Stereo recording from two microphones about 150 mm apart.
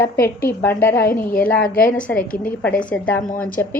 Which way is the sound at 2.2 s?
65° left (ahead or behind).